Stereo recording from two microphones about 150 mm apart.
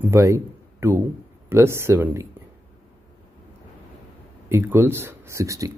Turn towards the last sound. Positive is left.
turn(degrees=-20)  # may be behind; listen again after turning